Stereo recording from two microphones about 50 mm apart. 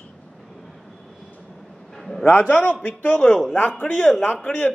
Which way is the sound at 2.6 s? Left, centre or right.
Left.